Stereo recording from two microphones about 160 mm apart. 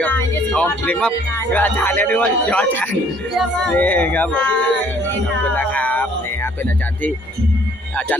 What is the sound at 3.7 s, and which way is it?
Speech, 10° left (ahead or behind).